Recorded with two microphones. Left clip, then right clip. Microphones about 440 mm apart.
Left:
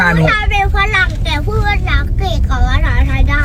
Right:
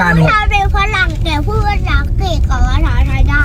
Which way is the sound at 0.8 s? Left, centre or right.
Left.